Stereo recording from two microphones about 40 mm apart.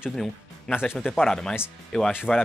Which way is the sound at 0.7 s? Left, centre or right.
Left.